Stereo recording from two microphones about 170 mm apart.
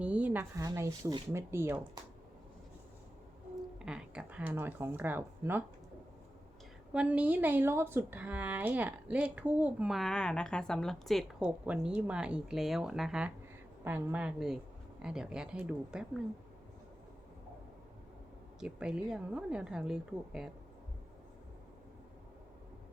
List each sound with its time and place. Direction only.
0.0 s a woman's voice: 5° right (ahead or behind)
0.5 s speech: 20° right (ahead or behind)
3.8 s speech: 5° right (ahead or behind)
6.9 s a woman's voice: 10° right (ahead or behind)
18.6 s a woman's voice: 5° right (ahead or behind)